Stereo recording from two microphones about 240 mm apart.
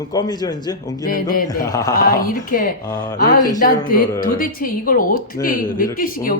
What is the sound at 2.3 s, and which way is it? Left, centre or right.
Speech, left.